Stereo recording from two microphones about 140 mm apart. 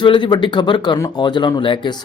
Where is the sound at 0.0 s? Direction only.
35° left (ahead or behind).